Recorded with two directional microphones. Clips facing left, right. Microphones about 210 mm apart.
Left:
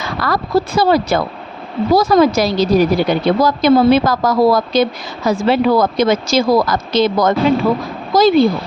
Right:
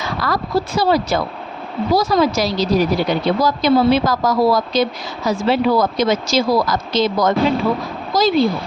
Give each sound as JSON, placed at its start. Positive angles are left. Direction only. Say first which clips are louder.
{"t": 0.2, "sound": "speech", "louder": "left 4 dB", "side_deg": 55}